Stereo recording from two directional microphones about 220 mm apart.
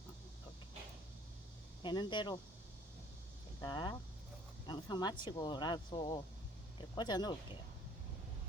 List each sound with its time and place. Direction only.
1.8 s speech: 20° left (ahead or behind)
3.6 s speech: 20° left (ahead or behind)